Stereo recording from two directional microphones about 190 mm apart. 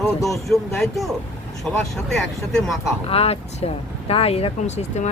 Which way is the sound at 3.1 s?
30° left (ahead or behind).